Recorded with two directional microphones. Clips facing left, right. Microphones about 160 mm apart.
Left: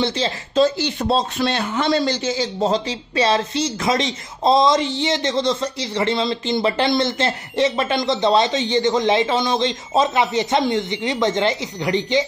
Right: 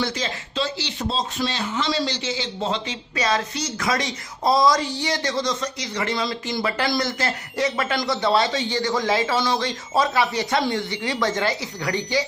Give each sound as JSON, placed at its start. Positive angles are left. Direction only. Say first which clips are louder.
{"t": 0.0, "sound": "speech", "louder": "left 5 dB", "side_deg": 30}
{"t": 0.6, "sound": "speech", "louder": "left 10 dB", "side_deg": 50}